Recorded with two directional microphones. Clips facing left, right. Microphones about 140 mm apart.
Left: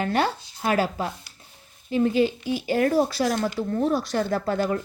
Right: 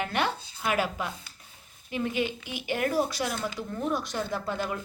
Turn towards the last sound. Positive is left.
turn(degrees=35)  # may be behind; listen again after turning